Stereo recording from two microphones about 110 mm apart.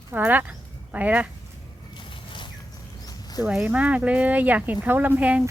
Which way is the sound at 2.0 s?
45° left (ahead or behind).